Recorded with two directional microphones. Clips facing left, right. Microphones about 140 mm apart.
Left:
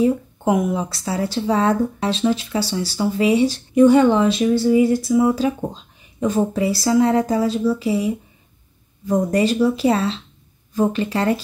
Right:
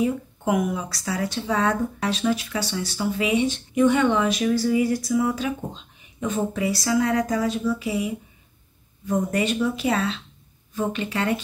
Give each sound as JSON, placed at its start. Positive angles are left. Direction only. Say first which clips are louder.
{"t": 0.0, "sound": "a woman's voice", "louder": "left 6 dB", "side_deg": 25}